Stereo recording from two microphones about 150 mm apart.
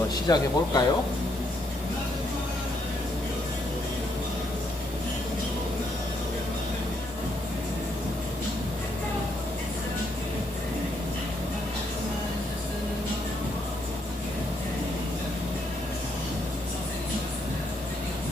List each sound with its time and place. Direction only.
0.3 s speech: 25° left (ahead or behind)